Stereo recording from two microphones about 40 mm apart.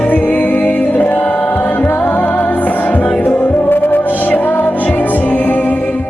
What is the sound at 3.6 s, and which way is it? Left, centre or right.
Music, left.